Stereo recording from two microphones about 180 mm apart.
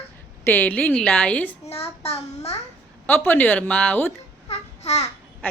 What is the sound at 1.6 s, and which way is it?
Child singing, 35° left (ahead or behind).